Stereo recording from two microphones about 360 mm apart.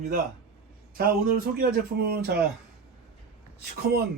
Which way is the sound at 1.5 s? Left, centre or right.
Right.